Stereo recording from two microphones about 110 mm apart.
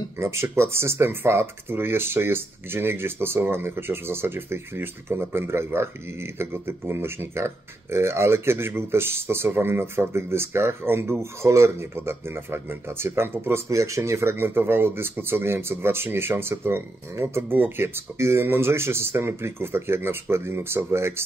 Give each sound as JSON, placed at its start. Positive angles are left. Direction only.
{"t": 0.2, "sound": "speech", "side_deg": -25}